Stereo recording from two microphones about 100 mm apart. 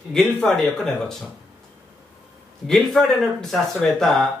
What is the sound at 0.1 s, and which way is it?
A man's voice, 5° left (ahead or behind).